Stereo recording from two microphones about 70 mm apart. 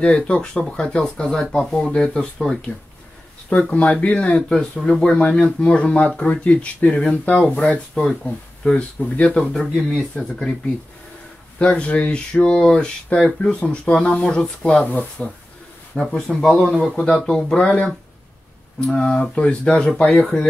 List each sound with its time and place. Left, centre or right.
0.0 s speech: centre
4.4 s speech: centre
11.5 s speech: centre
15.9 s speech: centre
18.9 s speech: centre